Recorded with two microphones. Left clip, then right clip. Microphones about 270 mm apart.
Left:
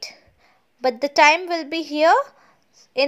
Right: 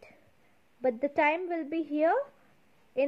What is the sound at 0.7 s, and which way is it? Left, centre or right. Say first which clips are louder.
A woman's voice: left 11 dB; centre.